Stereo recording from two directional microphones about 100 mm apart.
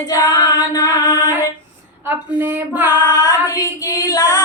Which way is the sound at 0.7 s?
40° left (ahead or behind).